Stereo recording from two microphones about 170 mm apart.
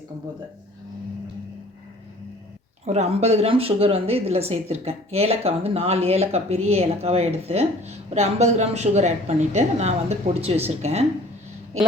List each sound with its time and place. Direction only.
2.8 s speech: 40° right (ahead or behind)